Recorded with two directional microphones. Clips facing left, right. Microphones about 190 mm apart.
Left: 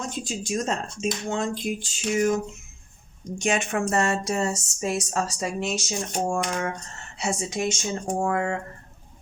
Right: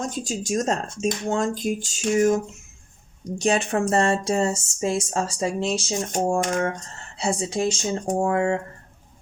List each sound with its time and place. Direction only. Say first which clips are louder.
0.0 s speech: right 3 dB; 45° right (ahead or behind); by 8.5 s 25° right (ahead or behind)